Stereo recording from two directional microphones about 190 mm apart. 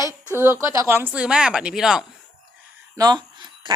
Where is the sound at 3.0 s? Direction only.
20° right (ahead or behind).